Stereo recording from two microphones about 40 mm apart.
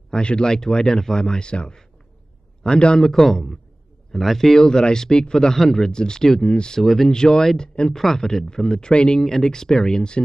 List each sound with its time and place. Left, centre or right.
0.1 s speech: left
3.1 s speech: centre
6.8 s speech: centre
7.1 s speech: centre
7.9 s speech: centre